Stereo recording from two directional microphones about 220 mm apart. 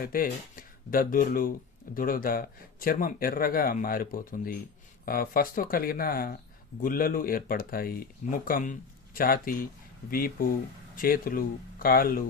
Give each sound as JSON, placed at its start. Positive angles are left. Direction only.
{"t": 0.0, "sound": "speech", "side_deg": 40}